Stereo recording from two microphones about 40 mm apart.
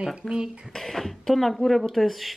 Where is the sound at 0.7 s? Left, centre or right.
Centre.